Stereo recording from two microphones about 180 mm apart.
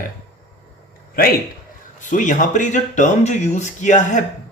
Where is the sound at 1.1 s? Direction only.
55° left (ahead or behind).